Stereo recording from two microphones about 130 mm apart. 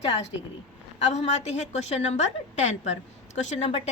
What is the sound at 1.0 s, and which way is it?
A woman's voice, 60° left (ahead or behind).